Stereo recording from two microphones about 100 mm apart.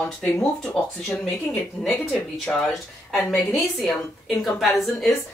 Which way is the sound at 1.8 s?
5° left (ahead or behind).